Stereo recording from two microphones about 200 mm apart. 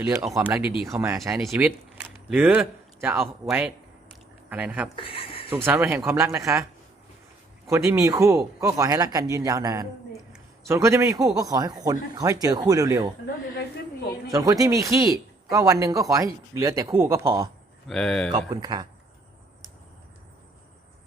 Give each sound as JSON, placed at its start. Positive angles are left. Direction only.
{"t": 0.3, "sound": "speech", "side_deg": -15}
{"t": 0.6, "sound": "speech", "side_deg": 25}
{"t": 0.9, "sound": "speech", "side_deg": -15}
{"t": 4.9, "sound": "speech", "side_deg": 25}
{"t": 5.5, "sound": "speech", "side_deg": -10}
{"t": 7.7, "sound": "speech", "side_deg": -15}
{"t": 10.1, "sound": "a sound", "side_deg": 0}
{"t": 10.7, "sound": "speech", "side_deg": -15}
{"t": 14.3, "sound": "speech", "side_deg": -15}
{"t": 17.8, "sound": "speech", "side_deg": 5}
{"t": 18.3, "sound": "speech", "side_deg": -20}